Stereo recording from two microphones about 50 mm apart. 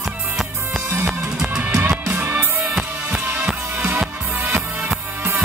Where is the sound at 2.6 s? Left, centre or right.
Centre.